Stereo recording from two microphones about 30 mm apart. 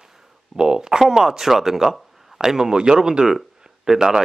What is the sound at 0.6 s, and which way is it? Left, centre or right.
Speech, right.